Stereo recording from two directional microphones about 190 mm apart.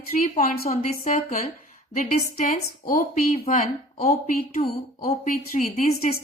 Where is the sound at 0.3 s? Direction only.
50° left (ahead or behind).